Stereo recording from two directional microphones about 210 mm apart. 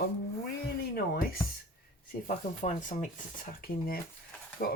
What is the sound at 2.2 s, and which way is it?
Speech, 40° left (ahead or behind).